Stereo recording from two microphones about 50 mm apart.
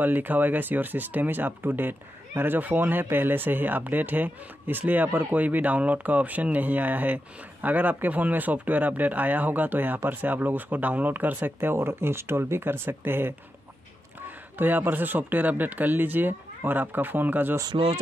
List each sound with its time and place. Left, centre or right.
0.0 s speech: right
11.7 s speech: right